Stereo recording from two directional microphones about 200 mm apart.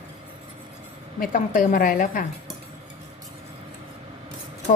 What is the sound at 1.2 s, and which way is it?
A woman's voice, 45° left (ahead or behind).